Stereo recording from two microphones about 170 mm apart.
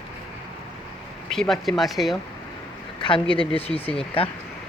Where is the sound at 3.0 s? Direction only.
30° left (ahead or behind).